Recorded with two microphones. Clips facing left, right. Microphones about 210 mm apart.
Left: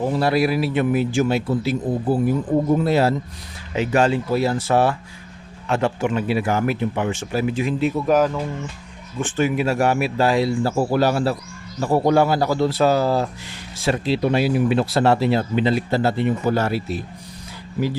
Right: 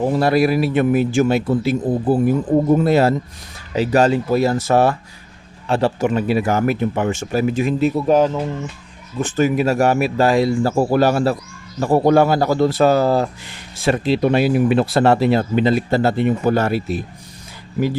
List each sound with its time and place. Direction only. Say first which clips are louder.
0.1 s speech: right 3 dB; 45° right (ahead or behind)
8.0 s speech: right 2 dB; 25° right (ahead or behind)
9.2 s speech: right 3 dB; 40° right (ahead or behind)